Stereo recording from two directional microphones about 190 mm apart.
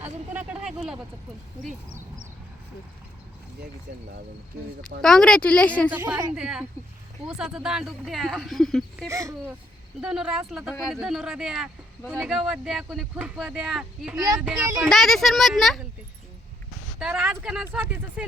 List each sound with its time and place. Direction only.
0.0 s a sound: 5° right (ahead or behind)
5.0 s a woman's voice: 5° left (ahead or behind)
5.9 s a woman's voice: 10° right (ahead or behind)
9.0 s a woman's voice: 15° right (ahead or behind)
10.0 s speech: 5° right (ahead or behind)
17.0 s speech: 5° right (ahead or behind)